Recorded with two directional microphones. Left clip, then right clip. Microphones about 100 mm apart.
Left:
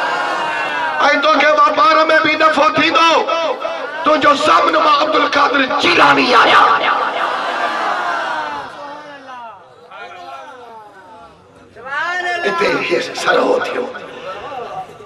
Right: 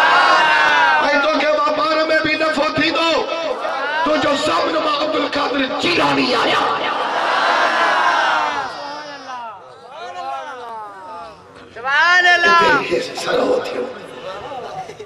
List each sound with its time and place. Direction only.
0.0 s crowd: 15° left (ahead or behind)
0.9 s a sound: 35° left (ahead or behind)
4.0 s speech: 35° left (ahead or behind)
7.4 s crowd: 15° left (ahead or behind)
11.8 s a sound: 15° left (ahead or behind)
12.5 s speech: 35° left (ahead or behind)